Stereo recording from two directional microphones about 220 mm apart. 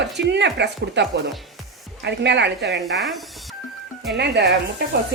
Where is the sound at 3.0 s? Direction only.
Centre (ahead or behind).